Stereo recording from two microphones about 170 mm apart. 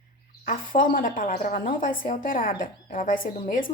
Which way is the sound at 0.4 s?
55° left (ahead or behind).